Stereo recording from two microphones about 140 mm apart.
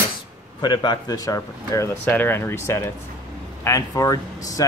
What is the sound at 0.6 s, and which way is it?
Speech, 30° left (ahead or behind).